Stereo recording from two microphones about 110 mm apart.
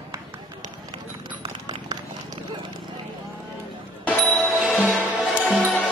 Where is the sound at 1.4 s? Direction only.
40° right (ahead or behind).